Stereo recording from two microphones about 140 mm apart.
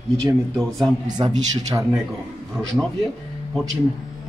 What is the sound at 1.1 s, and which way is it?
Speech, 30° right (ahead or behind).